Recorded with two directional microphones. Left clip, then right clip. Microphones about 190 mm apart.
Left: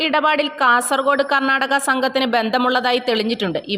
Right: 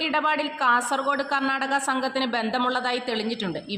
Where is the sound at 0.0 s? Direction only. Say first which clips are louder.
Left 7 dB; 40° left (ahead or behind).